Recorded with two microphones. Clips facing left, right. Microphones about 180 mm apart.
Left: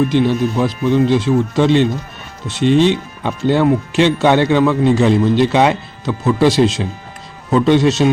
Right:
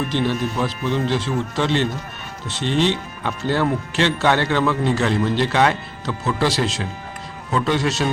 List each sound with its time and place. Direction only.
0.1 s speech: 15° left (ahead or behind)